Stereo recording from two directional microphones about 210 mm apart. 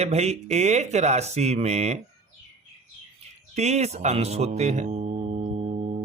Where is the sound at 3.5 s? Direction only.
30° right (ahead or behind).